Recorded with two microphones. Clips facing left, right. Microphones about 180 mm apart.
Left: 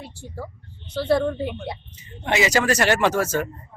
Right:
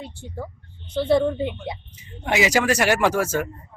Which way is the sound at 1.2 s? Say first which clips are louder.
Right 1 dB; 10° right (ahead or behind).